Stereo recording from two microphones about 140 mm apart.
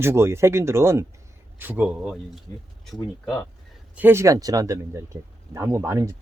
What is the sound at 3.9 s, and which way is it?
Speech, 15° right (ahead or behind).